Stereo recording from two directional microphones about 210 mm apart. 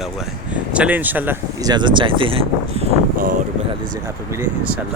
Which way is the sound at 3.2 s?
40° right (ahead or behind).